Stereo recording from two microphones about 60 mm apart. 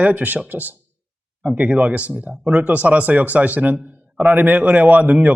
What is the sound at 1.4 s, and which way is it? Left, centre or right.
Speech, centre.